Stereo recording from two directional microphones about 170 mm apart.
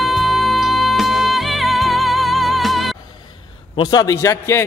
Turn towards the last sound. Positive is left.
turn(degrees=15)  # may be behind; listen again after turning